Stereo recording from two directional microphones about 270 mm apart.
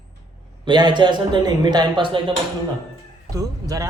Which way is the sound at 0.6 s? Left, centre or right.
Centre.